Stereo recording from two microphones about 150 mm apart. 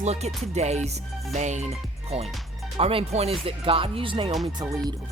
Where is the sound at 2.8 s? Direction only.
40° right (ahead or behind).